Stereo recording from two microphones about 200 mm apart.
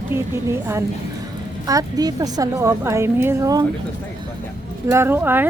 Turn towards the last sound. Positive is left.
turn(degrees=-10)  # may be behind; listen again after turning